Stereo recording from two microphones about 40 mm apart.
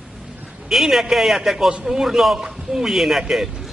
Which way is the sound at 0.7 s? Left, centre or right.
Centre.